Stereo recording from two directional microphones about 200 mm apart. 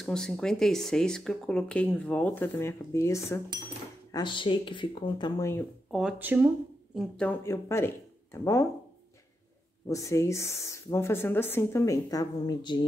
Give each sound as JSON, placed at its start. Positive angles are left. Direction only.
{"t": 0.0, "sound": "speech", "side_deg": 5}
{"t": 5.9, "sound": "speech", "side_deg": -5}
{"t": 7.0, "sound": "speech", "side_deg": 5}
{"t": 9.8, "sound": "speech", "side_deg": 15}